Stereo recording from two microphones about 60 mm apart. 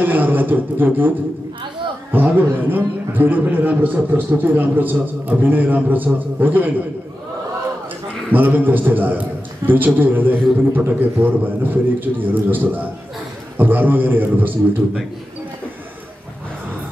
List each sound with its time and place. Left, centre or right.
0.0 s a man's voice: right
2.1 s a man's voice: right
8.3 s a man's voice: right